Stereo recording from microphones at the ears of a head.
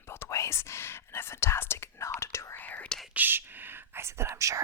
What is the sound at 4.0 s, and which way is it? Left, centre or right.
Speech, right.